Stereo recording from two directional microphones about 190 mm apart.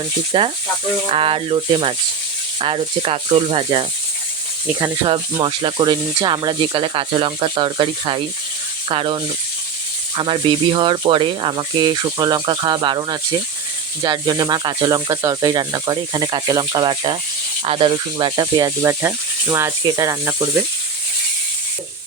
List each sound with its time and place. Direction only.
0.3 s speech: 25° right (ahead or behind)
5.0 s speech: 25° right (ahead or behind)